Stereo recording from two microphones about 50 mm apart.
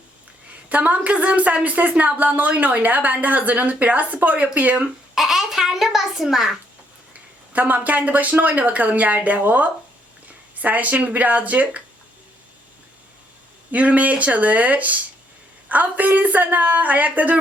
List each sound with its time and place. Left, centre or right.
0.7 s speech: right
5.1 s babbling: centre
7.1 s speech: right
13.7 s speech: right